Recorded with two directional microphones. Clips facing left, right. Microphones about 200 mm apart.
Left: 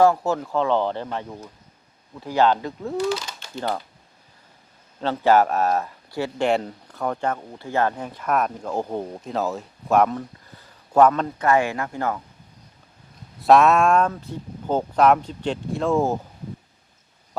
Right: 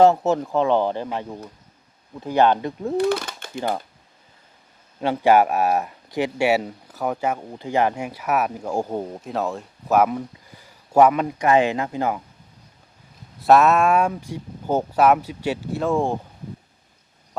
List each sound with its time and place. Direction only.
0.0 s speech: 20° right (ahead or behind)
3.0 s speech: 55° right (ahead or behind)
4.9 s speech: 15° right (ahead or behind)
13.4 s speech: centre (ahead or behind)